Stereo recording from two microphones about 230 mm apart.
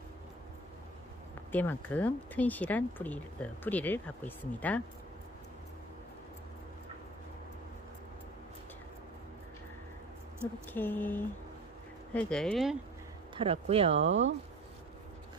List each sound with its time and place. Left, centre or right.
1.5 s speech: centre
10.7 s speech: centre
13.4 s speech: right
14.0 s speech: right